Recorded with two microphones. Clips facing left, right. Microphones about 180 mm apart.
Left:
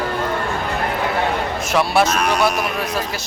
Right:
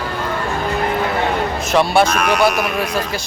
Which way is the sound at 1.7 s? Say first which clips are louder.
Right 3 dB; 5° left (ahead or behind).